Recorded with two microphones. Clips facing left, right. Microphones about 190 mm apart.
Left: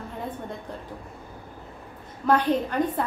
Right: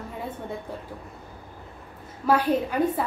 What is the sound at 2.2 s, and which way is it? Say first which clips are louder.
Speech: even; 5° right (ahead or behind).